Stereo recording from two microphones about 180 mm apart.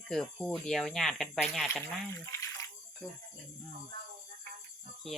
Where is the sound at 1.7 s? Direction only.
15° left (ahead or behind).